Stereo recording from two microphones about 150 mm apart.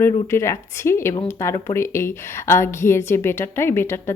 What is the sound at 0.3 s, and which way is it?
A woman's voice, 20° left (ahead or behind).